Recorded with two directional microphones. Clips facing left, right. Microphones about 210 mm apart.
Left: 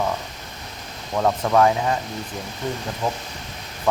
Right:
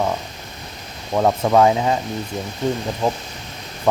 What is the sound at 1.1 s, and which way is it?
Speech, 25° right (ahead or behind).